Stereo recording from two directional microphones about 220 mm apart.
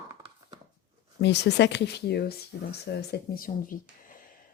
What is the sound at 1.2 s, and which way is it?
A woman's voice, 50° left (ahead or behind).